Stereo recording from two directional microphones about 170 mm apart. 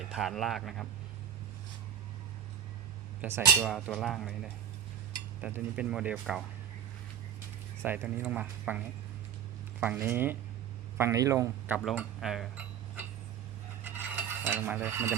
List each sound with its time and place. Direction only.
0.0 s speech: centre (ahead or behind)
3.2 s speech: 15° right (ahead or behind)
3.6 s speech: centre (ahead or behind)
5.4 s speech: 10° right (ahead or behind)
7.9 s speech: 10° right (ahead or behind)
9.8 s speech: 10° right (ahead or behind)
11.9 s speech: centre (ahead or behind)
13.8 s stir: 10° right (ahead or behind)